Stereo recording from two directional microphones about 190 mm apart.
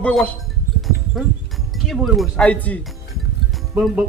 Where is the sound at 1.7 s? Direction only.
Centre (ahead or behind).